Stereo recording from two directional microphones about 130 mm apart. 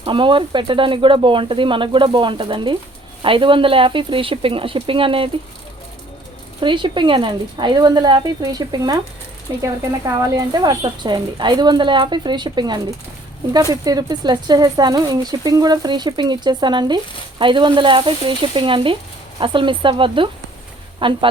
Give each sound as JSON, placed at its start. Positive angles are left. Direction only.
{"t": 0.0, "sound": "speech", "side_deg": -40}
{"t": 6.6, "sound": "speech", "side_deg": -35}